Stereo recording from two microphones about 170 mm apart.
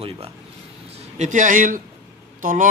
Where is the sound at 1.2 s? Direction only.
50° right (ahead or behind).